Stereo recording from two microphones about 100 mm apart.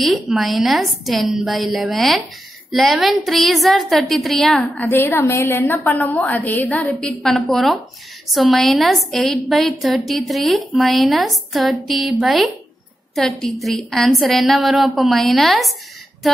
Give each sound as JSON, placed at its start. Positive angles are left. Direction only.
{"t": 0.0, "sound": "a woman's voice", "side_deg": 0}
{"t": 4.7, "sound": "a woman's voice", "side_deg": 20}